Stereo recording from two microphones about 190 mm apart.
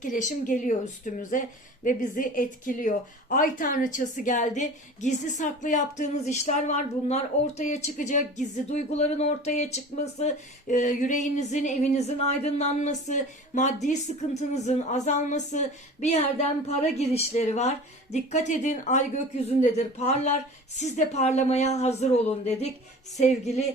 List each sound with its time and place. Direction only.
0.0 s a woman's voice: 40° left (ahead or behind)
23.1 s a woman's voice: 35° left (ahead or behind)